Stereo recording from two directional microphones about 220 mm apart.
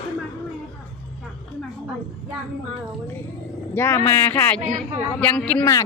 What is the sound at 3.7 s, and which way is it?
Speech, 10° left (ahead or behind).